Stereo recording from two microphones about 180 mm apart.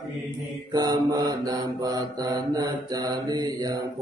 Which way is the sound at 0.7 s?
20° right (ahead or behind).